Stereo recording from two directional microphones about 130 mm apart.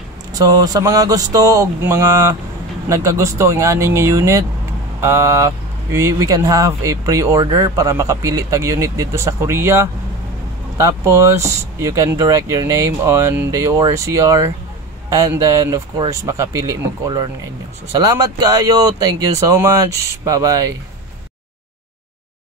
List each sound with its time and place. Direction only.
0.3 s speech: 30° right (ahead or behind)